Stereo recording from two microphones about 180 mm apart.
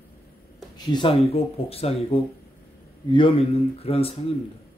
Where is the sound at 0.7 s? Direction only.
25° left (ahead or behind).